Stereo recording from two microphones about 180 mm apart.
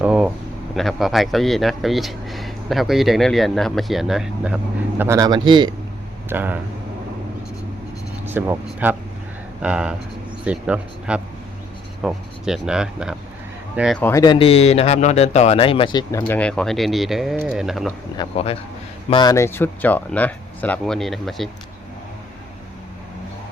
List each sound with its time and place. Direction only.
0.0 s a sound: 5° right (ahead or behind)
0.8 s speech: centre (ahead or behind); by 5.7 s 25° right (ahead or behind)
6.2 s speech: 10° right (ahead or behind)
8.2 s speech: 10° right (ahead or behind)
14.0 s speech: 15° left (ahead or behind)
14.3 s speech: 30° left (ahead or behind)
16.3 s speech: 5° left (ahead or behind)
19.1 s speech: 20° left (ahead or behind); by 21.5 s centre (ahead or behind)